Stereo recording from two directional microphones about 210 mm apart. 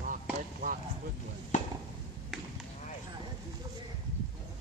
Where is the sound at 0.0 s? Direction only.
40° right (ahead or behind).